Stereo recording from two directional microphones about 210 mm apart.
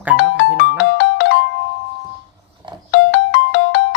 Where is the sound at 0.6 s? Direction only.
55° left (ahead or behind).